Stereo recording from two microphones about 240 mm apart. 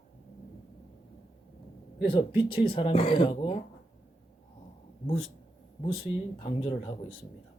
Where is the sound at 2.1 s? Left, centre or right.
Left.